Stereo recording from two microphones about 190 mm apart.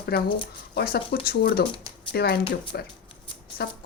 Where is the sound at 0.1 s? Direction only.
55° left (ahead or behind).